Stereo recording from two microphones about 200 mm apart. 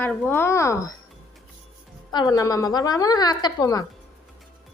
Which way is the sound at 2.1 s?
20° left (ahead or behind).